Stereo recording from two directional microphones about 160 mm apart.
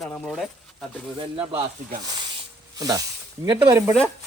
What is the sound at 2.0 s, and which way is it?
Snake, 25° right (ahead or behind).